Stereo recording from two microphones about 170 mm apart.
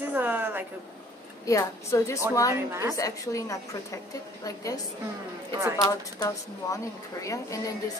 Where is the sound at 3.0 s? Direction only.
20° left (ahead or behind).